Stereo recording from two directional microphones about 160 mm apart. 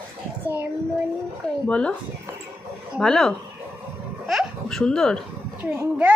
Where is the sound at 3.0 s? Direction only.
5° left (ahead or behind).